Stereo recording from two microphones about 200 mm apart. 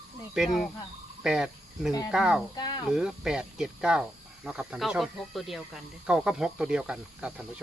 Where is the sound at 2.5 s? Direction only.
20° left (ahead or behind).